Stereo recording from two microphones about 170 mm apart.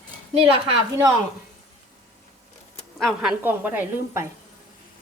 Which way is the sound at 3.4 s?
10° right (ahead or behind).